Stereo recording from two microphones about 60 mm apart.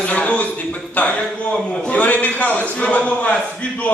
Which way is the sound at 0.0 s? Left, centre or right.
Left.